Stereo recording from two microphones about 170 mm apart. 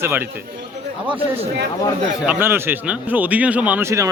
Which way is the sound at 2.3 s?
10° right (ahead or behind).